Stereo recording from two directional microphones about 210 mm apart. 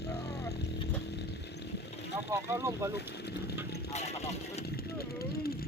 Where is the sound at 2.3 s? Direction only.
15° right (ahead or behind).